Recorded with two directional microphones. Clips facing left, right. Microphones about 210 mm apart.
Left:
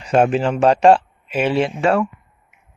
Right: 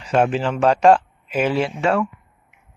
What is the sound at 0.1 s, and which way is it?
A man's voice, 40° left (ahead or behind).